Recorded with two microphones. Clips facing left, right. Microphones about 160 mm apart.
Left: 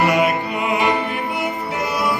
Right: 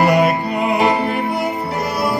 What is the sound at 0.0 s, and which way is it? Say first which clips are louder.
Music: right 3 dB; 35° right (ahead or behind).